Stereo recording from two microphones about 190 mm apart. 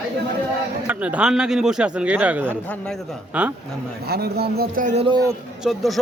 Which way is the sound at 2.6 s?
5° left (ahead or behind).